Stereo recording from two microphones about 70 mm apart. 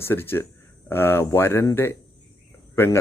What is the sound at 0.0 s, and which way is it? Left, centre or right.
Speech, left.